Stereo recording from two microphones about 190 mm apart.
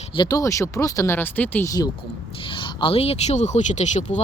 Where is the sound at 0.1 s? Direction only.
20° left (ahead or behind).